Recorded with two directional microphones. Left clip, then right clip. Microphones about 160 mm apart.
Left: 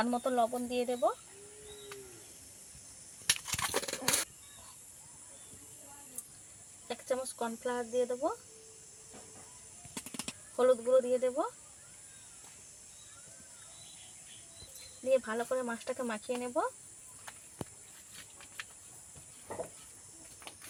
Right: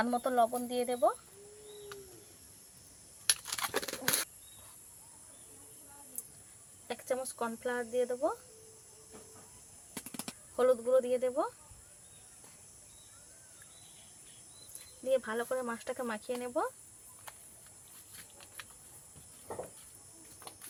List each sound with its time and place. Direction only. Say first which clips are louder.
0.0 s speech: right 1 dB; 5° right (ahead or behind)
3.2 s a sound: left 1 dB; centre (ahead or behind)
3.8 s bird: even; 20° left (ahead or behind)
6.8 s speech: even; centre (ahead or behind)
10.2 s speech: even; centre (ahead or behind)
15.1 s speech: left 1 dB; 5° right (ahead or behind)